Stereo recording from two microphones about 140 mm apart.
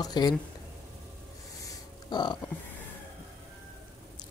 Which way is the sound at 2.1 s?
30° left (ahead or behind).